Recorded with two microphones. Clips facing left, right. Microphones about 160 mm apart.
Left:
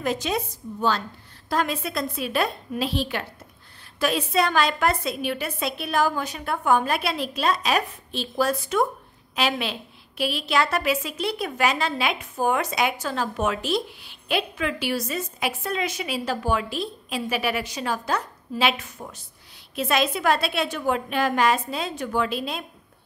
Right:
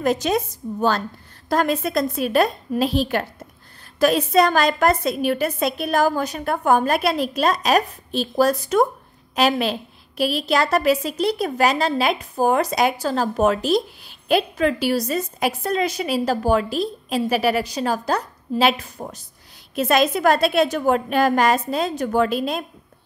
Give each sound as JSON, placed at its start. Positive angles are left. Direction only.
{"t": 0.0, "sound": "a woman's voice", "side_deg": -45}